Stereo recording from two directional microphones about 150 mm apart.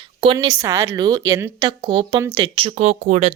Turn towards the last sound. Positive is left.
turn(degrees=-50)  # may be behind; listen again after turning